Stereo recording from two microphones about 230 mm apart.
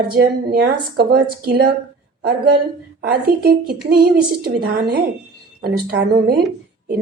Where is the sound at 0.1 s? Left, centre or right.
Right.